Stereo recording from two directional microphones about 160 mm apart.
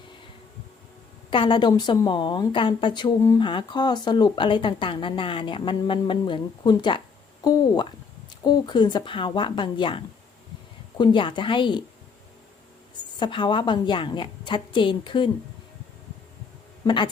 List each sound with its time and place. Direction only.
1.3 s a woman's voice: 30° left (ahead or behind)
13.1 s a woman's voice: 30° left (ahead or behind)
16.8 s speech: 30° left (ahead or behind)